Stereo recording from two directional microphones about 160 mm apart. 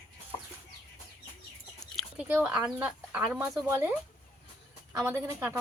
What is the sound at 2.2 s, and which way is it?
Speech, 5° right (ahead or behind).